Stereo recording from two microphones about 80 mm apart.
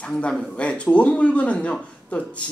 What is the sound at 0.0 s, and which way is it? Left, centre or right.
Speech, centre.